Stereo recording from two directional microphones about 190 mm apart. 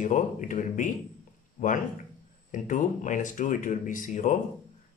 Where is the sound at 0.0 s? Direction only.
40° left (ahead or behind).